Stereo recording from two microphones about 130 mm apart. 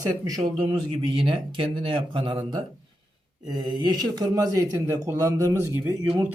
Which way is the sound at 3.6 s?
35° right (ahead or behind).